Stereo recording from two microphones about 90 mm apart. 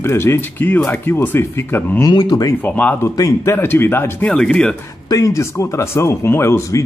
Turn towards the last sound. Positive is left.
turn(degrees=30)  # may be behind; listen again after turning